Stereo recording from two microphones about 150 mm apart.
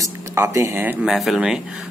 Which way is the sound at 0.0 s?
20° right (ahead or behind).